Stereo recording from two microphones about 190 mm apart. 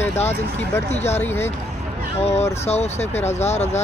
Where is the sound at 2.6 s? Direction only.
35° left (ahead or behind).